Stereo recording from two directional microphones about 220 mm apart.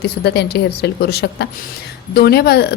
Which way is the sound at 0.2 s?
50° left (ahead or behind).